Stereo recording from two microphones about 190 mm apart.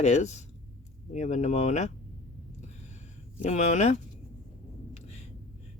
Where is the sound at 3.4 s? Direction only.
35° left (ahead or behind).